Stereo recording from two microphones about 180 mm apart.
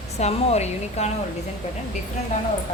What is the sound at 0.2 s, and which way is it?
Speech, 35° left (ahead or behind).